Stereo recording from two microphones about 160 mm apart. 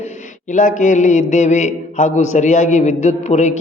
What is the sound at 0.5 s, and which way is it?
A man's voice, 50° left (ahead or behind).